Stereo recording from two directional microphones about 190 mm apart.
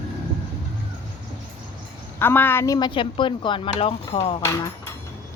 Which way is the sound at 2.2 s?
10° left (ahead or behind).